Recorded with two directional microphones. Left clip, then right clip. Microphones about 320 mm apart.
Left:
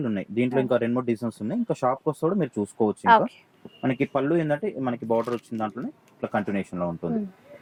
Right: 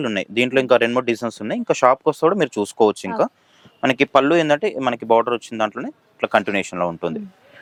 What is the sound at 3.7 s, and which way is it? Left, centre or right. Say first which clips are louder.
Speech: right 10 dB; centre.